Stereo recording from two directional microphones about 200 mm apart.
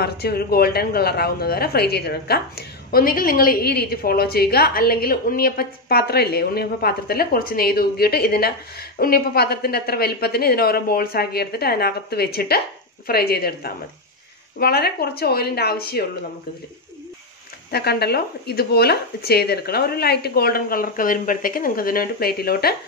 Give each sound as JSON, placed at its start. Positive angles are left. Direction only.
{"t": 0.0, "sound": "speech", "side_deg": 50}
{"t": 17.6, "sound": "speech", "side_deg": 50}